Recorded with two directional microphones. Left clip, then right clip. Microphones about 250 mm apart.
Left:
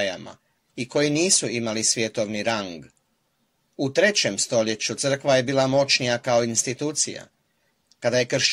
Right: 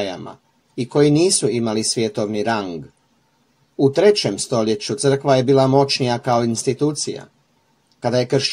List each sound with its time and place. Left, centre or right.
0.0 s speech: left